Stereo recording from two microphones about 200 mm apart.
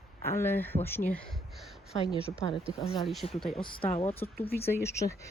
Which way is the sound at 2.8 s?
25° left (ahead or behind).